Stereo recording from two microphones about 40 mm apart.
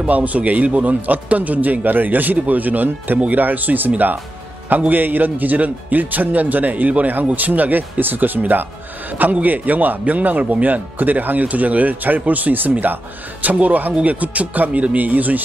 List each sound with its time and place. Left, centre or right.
0.0 s a man's voice: right